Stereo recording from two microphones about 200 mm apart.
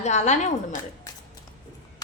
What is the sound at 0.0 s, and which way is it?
Speech, 35° left (ahead or behind).